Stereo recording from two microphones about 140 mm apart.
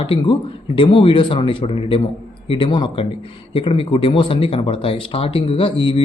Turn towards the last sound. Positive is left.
turn(degrees=40)  # may be behind; listen again after turning